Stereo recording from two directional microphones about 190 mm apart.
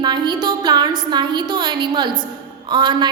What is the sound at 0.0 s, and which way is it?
A woman's voice, 20° right (ahead or behind).